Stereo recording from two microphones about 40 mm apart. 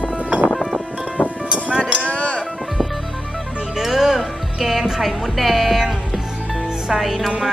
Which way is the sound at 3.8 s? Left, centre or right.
Centre.